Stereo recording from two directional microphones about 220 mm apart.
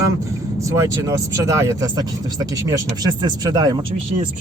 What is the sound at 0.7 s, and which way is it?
Speech, 15° right (ahead or behind).